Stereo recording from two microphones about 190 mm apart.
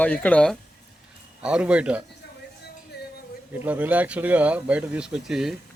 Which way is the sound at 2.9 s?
60° left (ahead or behind).